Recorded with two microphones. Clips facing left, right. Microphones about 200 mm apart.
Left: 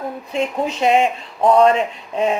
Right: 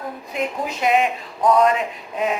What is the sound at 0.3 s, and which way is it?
Speech, 30° left (ahead or behind).